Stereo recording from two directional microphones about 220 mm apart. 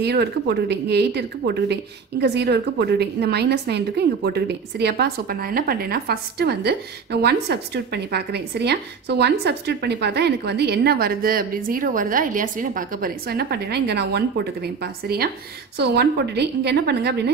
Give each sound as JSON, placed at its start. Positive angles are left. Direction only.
{"t": 0.0, "sound": "a woman's voice", "side_deg": -50}